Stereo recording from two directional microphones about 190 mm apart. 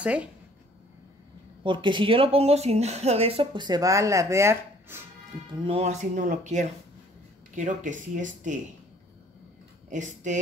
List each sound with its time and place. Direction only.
0.0 s speech: 5° right (ahead or behind)
1.6 s speech: 25° right (ahead or behind)
5.6 s speech: 30° right (ahead or behind)
9.8 s speech: 40° right (ahead or behind)